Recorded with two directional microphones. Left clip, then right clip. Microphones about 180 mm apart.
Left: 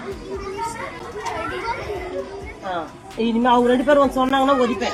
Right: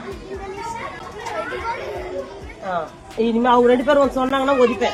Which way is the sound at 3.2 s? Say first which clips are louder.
Right 2 dB; 20° right (ahead or behind).